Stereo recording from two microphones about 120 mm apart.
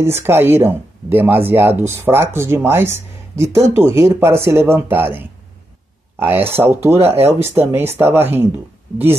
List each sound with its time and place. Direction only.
0.0 s speech: 20° right (ahead or behind)